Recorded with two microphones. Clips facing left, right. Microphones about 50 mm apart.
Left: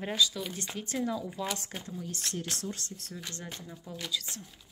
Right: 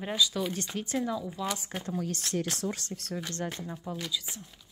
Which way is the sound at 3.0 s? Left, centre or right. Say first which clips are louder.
Right 7 dB; right.